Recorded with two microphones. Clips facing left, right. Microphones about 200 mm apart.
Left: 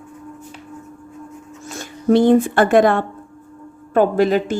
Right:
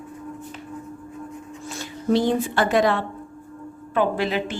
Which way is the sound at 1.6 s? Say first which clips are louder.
Left 6 dB; 50° left (ahead or behind).